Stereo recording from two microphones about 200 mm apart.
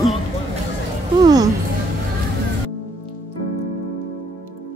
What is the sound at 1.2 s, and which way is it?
Speech, 20° right (ahead or behind).